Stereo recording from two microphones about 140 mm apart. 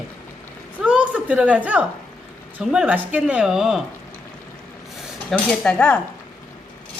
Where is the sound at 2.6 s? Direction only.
10° right (ahead or behind).